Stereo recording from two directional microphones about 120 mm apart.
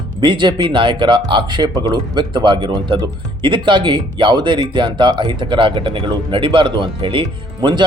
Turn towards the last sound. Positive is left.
turn(degrees=-40)  # may be behind; listen again after turning